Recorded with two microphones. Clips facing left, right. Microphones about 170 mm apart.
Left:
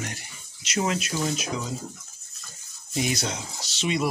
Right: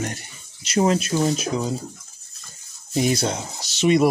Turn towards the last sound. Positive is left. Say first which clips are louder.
# right 9 dB
turn(degrees=-50)  # may be behind; listen again after turning